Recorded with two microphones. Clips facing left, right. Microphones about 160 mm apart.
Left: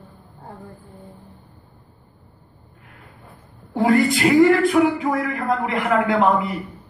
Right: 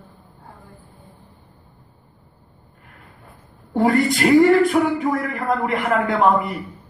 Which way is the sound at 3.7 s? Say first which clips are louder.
Even; 45° right (ahead or behind).